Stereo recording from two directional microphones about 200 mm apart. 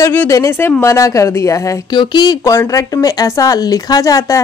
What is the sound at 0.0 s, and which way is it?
A woman's voice, 10° left (ahead or behind).